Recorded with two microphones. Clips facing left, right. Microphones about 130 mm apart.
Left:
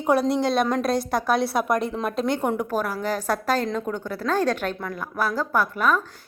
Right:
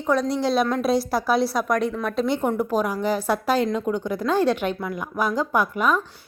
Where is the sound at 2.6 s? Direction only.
15° right (ahead or behind).